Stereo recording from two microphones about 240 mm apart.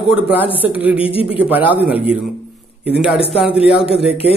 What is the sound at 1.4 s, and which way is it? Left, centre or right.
A man's voice, centre.